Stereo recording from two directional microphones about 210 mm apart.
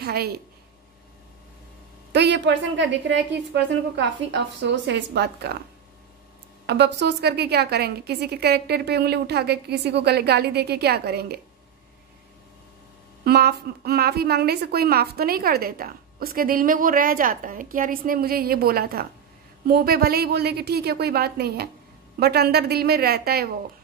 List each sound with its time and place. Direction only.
0.0 s a woman's voice: 50° right (ahead or behind)
2.1 s a woman's voice: 55° right (ahead or behind)
6.6 s a woman's voice: 50° right (ahead or behind)
13.2 s a woman's voice: 50° right (ahead or behind)